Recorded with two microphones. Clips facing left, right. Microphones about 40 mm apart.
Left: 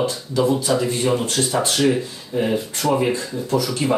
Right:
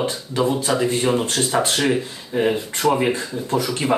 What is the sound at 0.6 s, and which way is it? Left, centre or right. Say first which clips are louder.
Speech: even; right.